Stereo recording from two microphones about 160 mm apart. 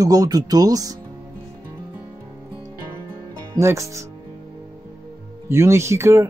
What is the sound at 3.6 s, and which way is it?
Speech, 15° right (ahead or behind).